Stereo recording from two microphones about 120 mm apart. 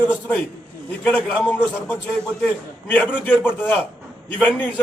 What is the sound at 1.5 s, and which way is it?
Speech, 15° left (ahead or behind).